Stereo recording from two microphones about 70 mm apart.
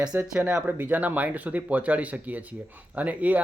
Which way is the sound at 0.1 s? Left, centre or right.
Right.